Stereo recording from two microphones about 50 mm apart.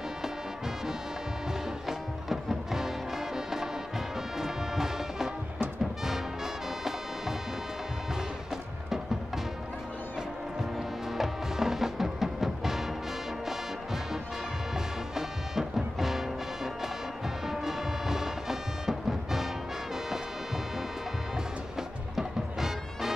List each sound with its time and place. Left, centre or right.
1.9 s music: centre
4.4 s music: centre
11.1 s music: centre
15.1 s music: centre
21.7 s music: centre